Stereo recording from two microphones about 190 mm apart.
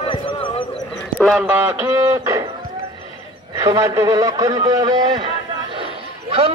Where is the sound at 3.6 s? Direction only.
15° right (ahead or behind).